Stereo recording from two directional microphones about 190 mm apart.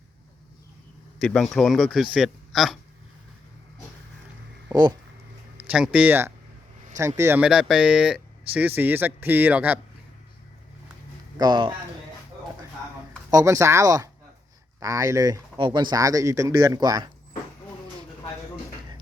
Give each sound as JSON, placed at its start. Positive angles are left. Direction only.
{"t": 1.2, "sound": "speech", "side_deg": 5}
{"t": 4.7, "sound": "speech", "side_deg": -20}
{"t": 5.5, "sound": "speech", "side_deg": -5}
{"t": 11.3, "sound": "speech", "side_deg": -25}
{"t": 13.3, "sound": "speech", "side_deg": -15}